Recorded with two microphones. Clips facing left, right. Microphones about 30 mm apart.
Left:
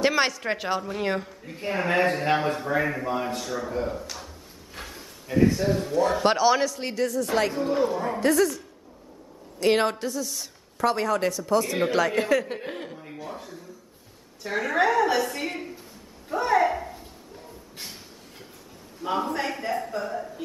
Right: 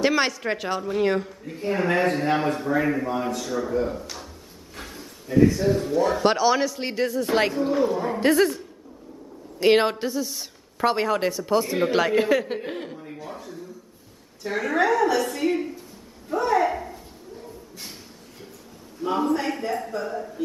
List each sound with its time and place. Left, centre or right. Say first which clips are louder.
0.0 s a woman's voice: right 1 dB; centre
6.7 s a woman's voice: right 1 dB; centre
7.5 s a woman's voice: right 2 dB; centre
8.2 s a man's voice: right 2 dB; right; by 12.5 s centre
12.5 s a woman's voice: right 3 dB; centre
19.0 s a man's voice: right 3 dB; centre